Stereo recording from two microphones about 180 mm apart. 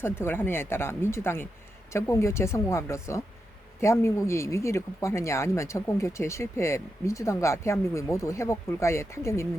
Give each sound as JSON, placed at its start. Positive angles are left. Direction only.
{"t": 0.0, "sound": "speech", "side_deg": 15}